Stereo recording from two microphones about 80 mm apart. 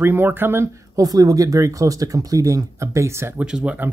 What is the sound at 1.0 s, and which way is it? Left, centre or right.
Speech, right.